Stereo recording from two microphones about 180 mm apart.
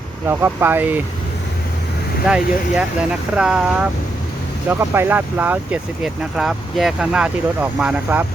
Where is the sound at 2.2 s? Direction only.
5° right (ahead or behind).